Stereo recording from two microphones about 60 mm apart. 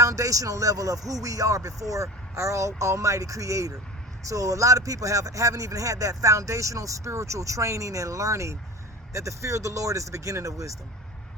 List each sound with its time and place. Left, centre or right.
0.0 s a man's voice: right